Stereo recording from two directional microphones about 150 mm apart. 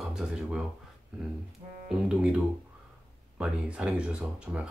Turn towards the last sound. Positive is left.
turn(degrees=-5)  # may be behind; listen again after turning